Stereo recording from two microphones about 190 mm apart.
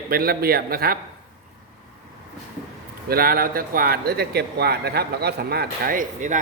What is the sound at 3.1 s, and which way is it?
Speech, 50° right (ahead or behind).